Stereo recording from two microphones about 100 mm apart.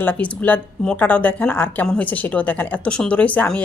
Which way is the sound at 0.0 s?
15° left (ahead or behind).